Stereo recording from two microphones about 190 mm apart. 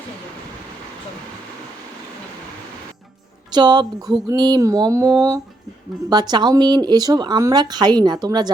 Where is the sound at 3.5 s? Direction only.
20° right (ahead or behind).